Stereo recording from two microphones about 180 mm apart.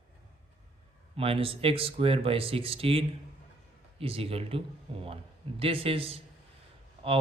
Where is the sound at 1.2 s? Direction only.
30° right (ahead or behind).